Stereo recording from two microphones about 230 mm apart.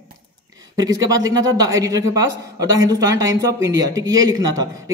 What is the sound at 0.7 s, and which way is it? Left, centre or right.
A man's voice, centre.